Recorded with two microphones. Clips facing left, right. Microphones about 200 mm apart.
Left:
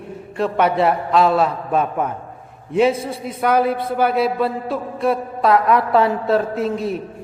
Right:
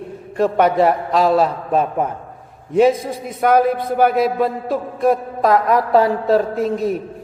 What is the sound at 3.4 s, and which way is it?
A man's voice, 45° right (ahead or behind).